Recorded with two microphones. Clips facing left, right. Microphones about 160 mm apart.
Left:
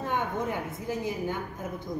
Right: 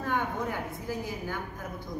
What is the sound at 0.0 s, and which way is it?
A woman's voice, 20° left (ahead or behind).